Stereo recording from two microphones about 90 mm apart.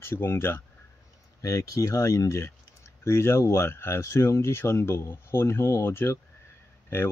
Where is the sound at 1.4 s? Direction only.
40° left (ahead or behind).